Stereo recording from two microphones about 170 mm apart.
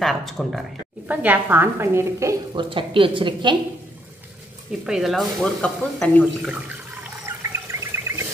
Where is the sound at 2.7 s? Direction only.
30° right (ahead or behind).